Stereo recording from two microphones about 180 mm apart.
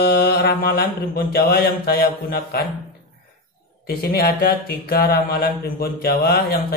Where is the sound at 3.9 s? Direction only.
60° left (ahead or behind).